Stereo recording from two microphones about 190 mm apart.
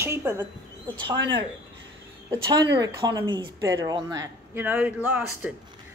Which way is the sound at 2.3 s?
20° right (ahead or behind).